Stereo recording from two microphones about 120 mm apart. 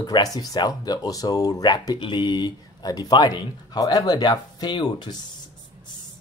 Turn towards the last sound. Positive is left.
turn(degrees=40)  # may be behind; listen again after turning